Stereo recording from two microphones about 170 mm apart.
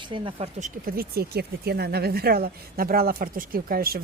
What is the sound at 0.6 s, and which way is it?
Speech, 50° right (ahead or behind).